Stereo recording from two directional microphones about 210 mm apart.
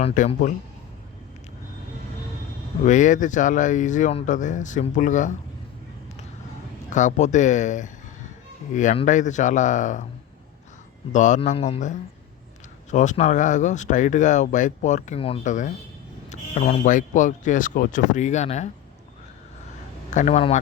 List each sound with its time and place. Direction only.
0.0 s speech: 30° left (ahead or behind)
2.8 s speech: 35° left (ahead or behind)
6.9 s speech: 35° left (ahead or behind)
11.1 s speech: 35° left (ahead or behind)
20.1 s speech: 35° left (ahead or behind)